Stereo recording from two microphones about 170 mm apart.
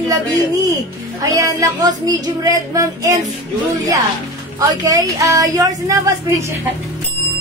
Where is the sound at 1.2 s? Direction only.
20° right (ahead or behind).